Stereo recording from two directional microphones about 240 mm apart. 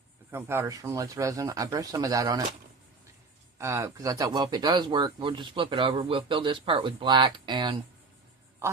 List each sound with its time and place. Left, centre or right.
0.3 s speech: centre
3.6 s speech: centre